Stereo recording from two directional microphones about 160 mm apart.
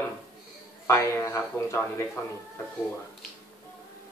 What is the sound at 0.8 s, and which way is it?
Speech, 15° left (ahead or behind).